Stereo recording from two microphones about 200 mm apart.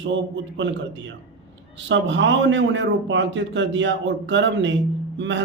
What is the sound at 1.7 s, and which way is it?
A man's voice, 65° right (ahead or behind).